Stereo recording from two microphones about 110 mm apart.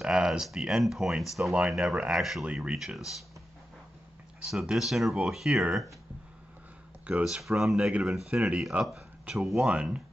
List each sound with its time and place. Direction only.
0.0 s speech: 5° right (ahead or behind)
4.5 s speech: 5° right (ahead or behind)
7.1 s speech: 10° right (ahead or behind)